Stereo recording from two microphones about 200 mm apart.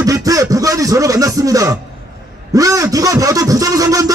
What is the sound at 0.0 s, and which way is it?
Music, 15° right (ahead or behind).